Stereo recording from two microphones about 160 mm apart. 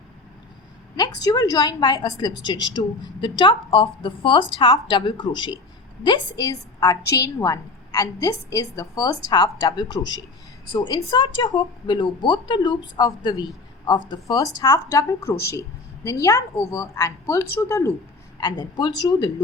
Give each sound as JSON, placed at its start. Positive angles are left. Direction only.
{"t": 0.9, "sound": "a woman's voice", "side_deg": 25}